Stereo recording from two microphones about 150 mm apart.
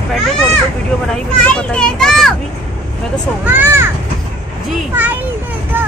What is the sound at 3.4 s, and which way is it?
Speech, 15° right (ahead or behind).